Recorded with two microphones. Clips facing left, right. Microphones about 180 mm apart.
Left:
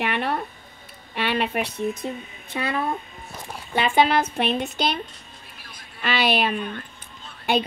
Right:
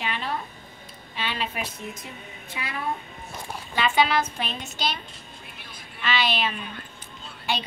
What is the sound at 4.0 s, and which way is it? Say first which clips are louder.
Speech: left 5 dB; 55° left (ahead or behind).